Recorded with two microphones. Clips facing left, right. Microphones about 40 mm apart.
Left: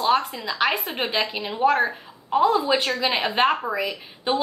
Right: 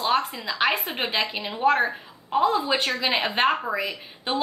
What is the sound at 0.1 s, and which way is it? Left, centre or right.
A woman's voice, centre.